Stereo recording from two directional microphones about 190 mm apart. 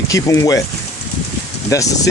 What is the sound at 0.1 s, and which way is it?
Speech, 15° left (ahead or behind).